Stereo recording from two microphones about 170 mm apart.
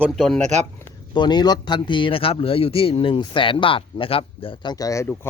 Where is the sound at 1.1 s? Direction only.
25° left (ahead or behind).